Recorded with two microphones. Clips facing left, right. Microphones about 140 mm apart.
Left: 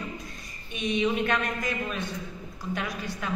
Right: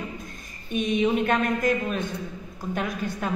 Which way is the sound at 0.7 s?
45° right (ahead or behind).